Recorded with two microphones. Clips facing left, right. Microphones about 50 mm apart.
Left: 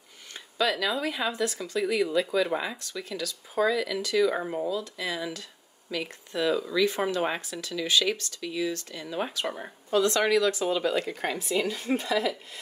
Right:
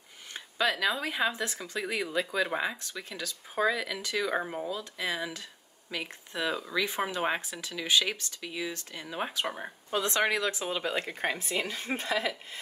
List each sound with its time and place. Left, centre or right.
0.3 s speech: centre
1.3 s speech: right
1.8 s speech: centre
4.7 s speech: centre
9.9 s speech: right